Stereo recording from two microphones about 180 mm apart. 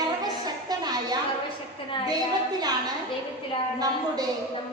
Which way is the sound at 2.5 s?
20° right (ahead or behind).